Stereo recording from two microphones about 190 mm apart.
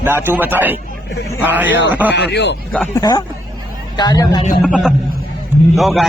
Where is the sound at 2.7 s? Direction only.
10° left (ahead or behind).